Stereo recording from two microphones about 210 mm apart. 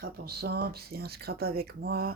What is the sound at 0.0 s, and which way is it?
Speech, 50° right (ahead or behind).